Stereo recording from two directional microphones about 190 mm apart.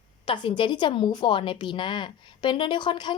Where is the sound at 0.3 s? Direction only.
25° left (ahead or behind).